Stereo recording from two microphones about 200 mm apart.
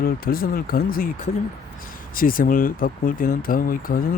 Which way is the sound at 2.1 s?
45° left (ahead or behind).